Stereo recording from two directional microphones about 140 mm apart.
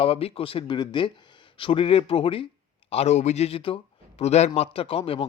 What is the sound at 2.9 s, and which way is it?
Speech, 50° left (ahead or behind).